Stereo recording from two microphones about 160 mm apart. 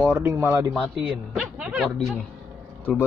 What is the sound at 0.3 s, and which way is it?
Speech, 15° right (ahead or behind).